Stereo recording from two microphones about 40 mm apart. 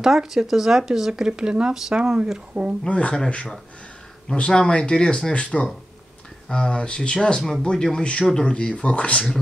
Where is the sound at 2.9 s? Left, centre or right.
Left.